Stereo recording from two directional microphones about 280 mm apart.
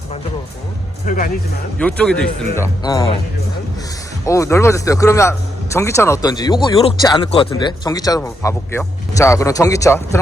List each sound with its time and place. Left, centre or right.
1.0 s speech: left
1.8 s speech: centre
2.8 s speech: centre
4.3 s speech: centre